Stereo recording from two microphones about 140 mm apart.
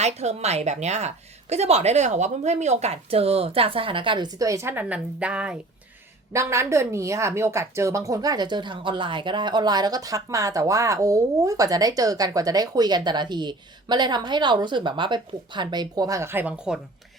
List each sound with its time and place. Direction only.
0.0 s a woman's voice: 50° right (ahead or behind)
4.4 s a woman's voice: 20° right (ahead or behind)
6.3 s speech: 20° right (ahead or behind)